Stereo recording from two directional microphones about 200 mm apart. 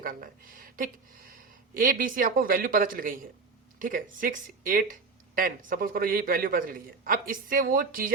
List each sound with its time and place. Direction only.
0.0 s speech: 45° right (ahead or behind)